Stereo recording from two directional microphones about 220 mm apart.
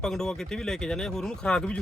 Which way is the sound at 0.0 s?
5° left (ahead or behind).